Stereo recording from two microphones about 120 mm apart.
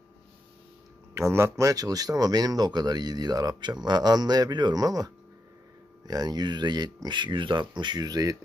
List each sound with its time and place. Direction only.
1.1 s speech: 20° right (ahead or behind)